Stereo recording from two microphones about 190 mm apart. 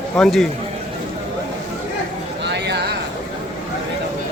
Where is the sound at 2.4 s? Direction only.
65° right (ahead or behind).